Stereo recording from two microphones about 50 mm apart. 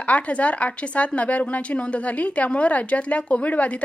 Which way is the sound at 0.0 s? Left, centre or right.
Left.